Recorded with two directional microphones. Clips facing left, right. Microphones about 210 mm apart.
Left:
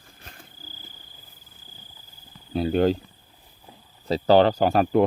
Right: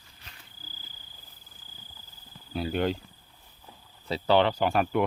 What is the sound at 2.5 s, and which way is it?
Speech, 35° left (ahead or behind).